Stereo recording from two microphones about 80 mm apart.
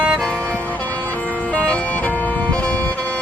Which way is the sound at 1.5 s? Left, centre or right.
Centre.